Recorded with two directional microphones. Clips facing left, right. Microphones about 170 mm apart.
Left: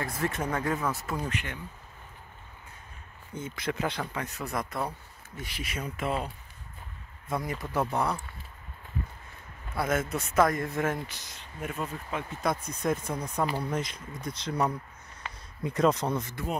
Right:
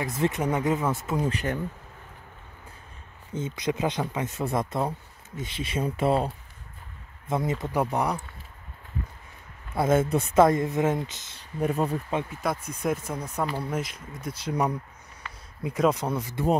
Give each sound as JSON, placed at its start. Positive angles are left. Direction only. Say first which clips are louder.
{"t": 0.0, "sound": "speech", "louder": "right 5 dB", "side_deg": -20}
{"t": 1.3, "sound": "speech", "louder": "right 7 dB", "side_deg": -40}
{"t": 3.3, "sound": "speech", "louder": "right 4 dB", "side_deg": -20}
{"t": 7.2, "sound": "speech", "louder": "right 5 dB", "side_deg": -25}
{"t": 9.8, "sound": "speech", "louder": "right 6 dB", "side_deg": -30}
{"t": 11.6, "sound": "speech", "louder": "right 9 dB", "side_deg": -35}
{"t": 12.3, "sound": "speech", "louder": "right 1 dB", "side_deg": -10}
{"t": 15.2, "sound": "a sound", "louder": "left 1 dB", "side_deg": 20}
{"t": 15.6, "sound": "speech", "louder": "right 1 dB", "side_deg": -5}